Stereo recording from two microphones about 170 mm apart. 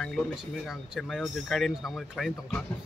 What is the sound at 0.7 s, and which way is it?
A man's voice, centre (ahead or behind).